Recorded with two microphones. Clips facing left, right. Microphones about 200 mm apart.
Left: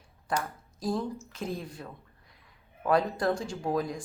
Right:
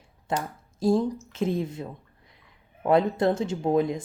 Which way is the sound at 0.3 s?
25° right (ahead or behind).